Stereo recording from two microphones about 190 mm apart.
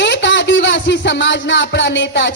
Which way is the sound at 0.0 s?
70° left (ahead or behind).